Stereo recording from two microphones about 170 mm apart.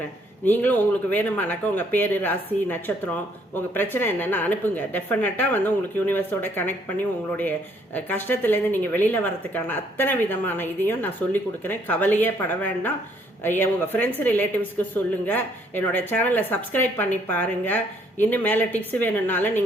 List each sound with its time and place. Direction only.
0.4 s speech: 10° left (ahead or behind)
7.9 s speech: 10° left (ahead or behind)